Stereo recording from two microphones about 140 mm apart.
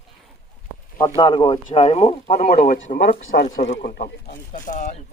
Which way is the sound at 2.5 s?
65° left (ahead or behind).